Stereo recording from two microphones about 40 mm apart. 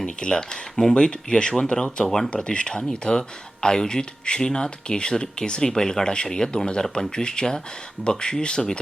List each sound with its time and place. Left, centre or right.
0.0 s speech: centre
2.0 s speech: centre
2.3 s speech: left